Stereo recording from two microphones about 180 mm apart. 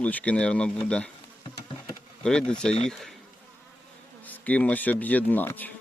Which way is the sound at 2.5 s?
5° left (ahead or behind).